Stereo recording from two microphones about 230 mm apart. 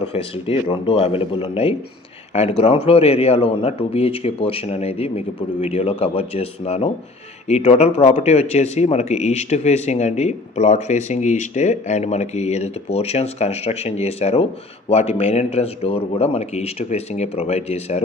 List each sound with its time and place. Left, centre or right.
0.1 s speech: left